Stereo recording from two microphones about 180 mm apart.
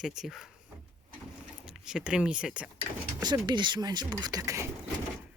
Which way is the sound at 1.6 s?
5° right (ahead or behind).